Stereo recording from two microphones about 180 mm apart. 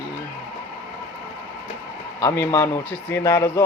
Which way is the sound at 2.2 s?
20° left (ahead or behind).